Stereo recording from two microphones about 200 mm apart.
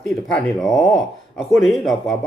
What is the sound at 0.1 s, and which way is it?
Speech, centre (ahead or behind).